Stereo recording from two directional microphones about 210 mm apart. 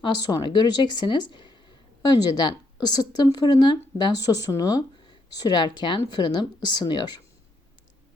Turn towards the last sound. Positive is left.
turn(degrees=20)  # may be behind; listen again after turning